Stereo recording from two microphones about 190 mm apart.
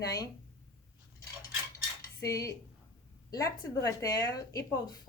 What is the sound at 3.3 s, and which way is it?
Speech, 20° left (ahead or behind).